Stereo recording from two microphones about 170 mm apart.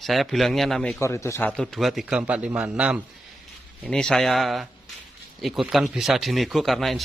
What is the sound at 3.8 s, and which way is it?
Speech, 5° left (ahead or behind).